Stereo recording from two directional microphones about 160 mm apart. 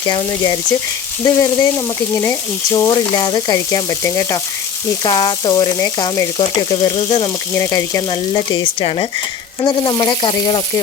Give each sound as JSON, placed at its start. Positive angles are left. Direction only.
{"t": 0.1, "sound": "speech", "side_deg": 25}
{"t": 2.7, "sound": "speech", "side_deg": 20}
{"t": 7.5, "sound": "speech", "side_deg": 20}